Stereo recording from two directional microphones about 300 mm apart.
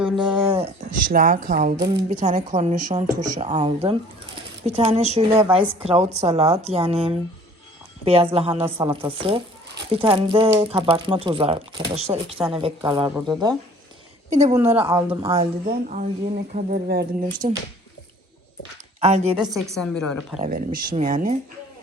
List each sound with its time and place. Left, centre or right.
0.0 s speech: centre
14.8 s speech: centre
15.6 s speech: right
18.9 s a woman's voice: right
19.4 s a woman's voice: centre
20.4 s speech: right